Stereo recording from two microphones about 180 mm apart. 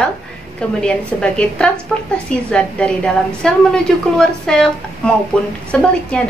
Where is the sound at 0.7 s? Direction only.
5° left (ahead or behind).